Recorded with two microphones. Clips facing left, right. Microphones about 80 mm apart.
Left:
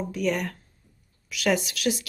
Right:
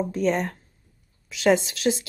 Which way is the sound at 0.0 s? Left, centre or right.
Right.